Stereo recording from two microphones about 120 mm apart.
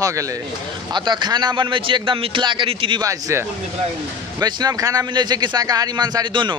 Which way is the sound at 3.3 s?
25° right (ahead or behind).